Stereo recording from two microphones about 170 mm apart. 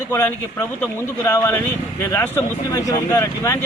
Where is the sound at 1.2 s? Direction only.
15° left (ahead or behind).